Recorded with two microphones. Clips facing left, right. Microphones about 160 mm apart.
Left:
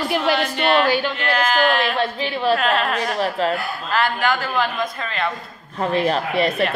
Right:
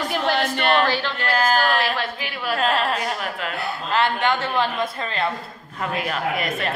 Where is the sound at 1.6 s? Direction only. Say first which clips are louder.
Left 3 dB; 20° left (ahead or behind).